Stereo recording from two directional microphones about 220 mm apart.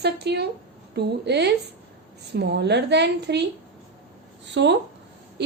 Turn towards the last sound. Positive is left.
turn(degrees=-55)  # may be behind; listen again after turning